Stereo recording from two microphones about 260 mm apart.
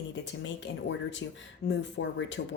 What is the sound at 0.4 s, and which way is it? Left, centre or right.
Speech, left.